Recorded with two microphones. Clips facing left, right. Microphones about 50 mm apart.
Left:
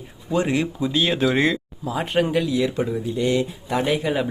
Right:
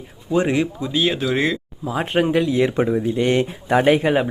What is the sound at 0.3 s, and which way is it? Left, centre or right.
Speech, centre.